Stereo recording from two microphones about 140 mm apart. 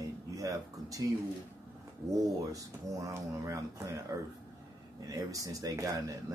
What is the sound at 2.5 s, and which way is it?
Speech, 25° right (ahead or behind).